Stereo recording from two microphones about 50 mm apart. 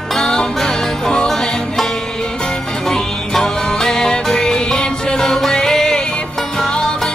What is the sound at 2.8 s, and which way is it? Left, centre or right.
Music, centre.